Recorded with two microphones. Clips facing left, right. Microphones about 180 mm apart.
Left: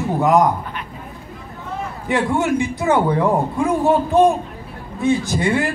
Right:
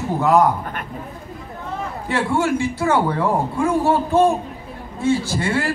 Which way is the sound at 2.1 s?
15° left (ahead or behind).